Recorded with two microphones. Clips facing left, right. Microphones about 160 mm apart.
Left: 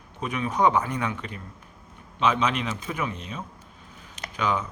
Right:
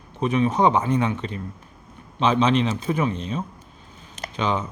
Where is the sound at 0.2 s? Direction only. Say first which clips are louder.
Right 5 dB; 25° right (ahead or behind).